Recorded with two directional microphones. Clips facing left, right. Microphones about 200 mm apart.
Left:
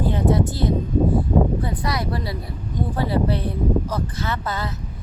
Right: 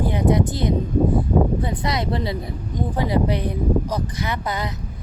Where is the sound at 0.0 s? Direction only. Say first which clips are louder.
Right 1 dB; 15° right (ahead or behind).